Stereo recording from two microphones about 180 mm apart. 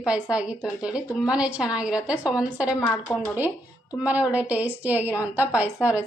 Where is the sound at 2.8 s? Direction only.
10° left (ahead or behind).